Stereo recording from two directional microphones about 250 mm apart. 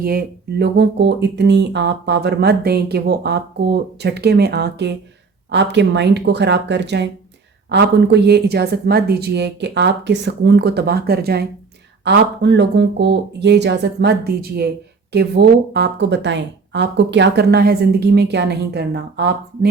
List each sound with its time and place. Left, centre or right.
0.0 s speech: right